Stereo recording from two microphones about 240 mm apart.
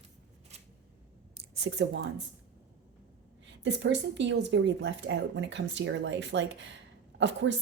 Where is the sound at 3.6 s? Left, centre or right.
Right.